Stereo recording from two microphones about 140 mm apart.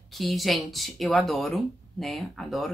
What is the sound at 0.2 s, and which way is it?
Speech, centre (ahead or behind).